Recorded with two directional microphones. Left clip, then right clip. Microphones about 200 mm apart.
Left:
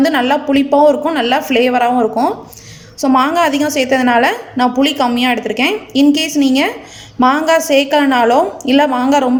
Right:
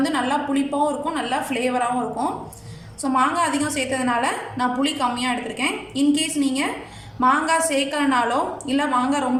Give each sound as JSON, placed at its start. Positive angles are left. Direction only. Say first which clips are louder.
{"t": 0.0, "sound": "a woman's voice", "louder": "left 9 dB", "side_deg": 40}